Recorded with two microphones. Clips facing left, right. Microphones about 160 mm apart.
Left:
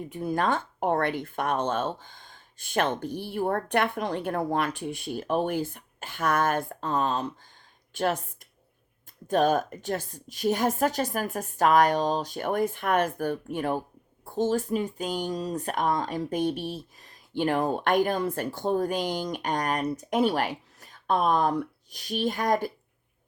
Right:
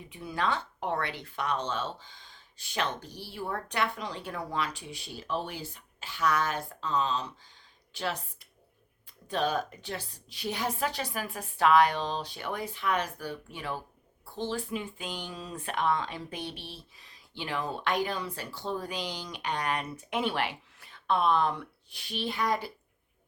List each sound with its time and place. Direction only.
0.0 s speech: 45° left (ahead or behind)